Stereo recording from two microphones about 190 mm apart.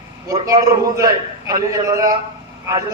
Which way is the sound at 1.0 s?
15° right (ahead or behind).